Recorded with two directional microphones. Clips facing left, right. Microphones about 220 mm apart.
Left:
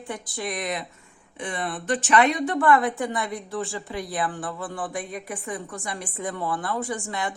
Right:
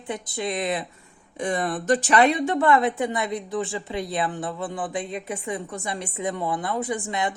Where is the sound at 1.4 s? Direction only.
45° right (ahead or behind); by 7.3 s 20° right (ahead or behind).